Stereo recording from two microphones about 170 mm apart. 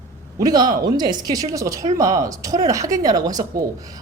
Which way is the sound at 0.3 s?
25° right (ahead or behind).